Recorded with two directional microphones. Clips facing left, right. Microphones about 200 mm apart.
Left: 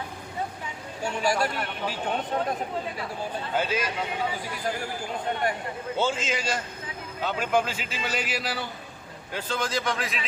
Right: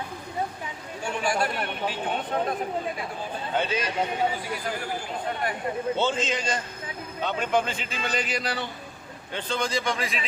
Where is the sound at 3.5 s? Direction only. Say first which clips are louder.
Even; 5° left (ahead or behind).